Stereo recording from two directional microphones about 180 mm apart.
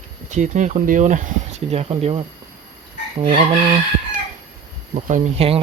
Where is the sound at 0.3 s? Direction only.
40° right (ahead or behind).